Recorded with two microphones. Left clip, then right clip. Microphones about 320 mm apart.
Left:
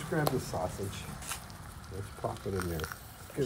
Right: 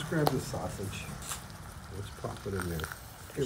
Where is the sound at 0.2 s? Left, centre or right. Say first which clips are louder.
Right 3 dB; centre.